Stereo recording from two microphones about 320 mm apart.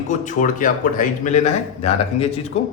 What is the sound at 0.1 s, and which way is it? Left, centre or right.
A man's voice, left.